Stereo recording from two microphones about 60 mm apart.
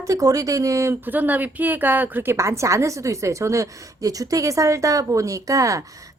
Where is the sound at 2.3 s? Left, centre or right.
Right.